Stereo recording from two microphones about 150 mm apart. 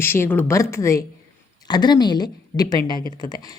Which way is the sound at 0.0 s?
15° left (ahead or behind).